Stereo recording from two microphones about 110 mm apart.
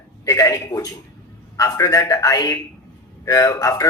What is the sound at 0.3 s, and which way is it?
Speech, 35° left (ahead or behind).